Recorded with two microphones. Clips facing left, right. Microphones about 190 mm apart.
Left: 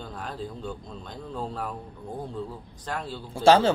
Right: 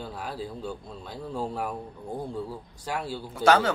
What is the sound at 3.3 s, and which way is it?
Speech, 30° left (ahead or behind).